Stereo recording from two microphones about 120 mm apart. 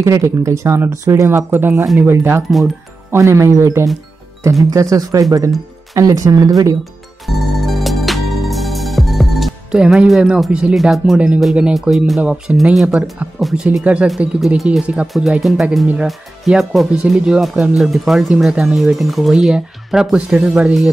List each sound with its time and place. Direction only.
0.0 s speech: 25° right (ahead or behind)
7.6 s music: centre (ahead or behind)
12.2 s speech: 10° right (ahead or behind)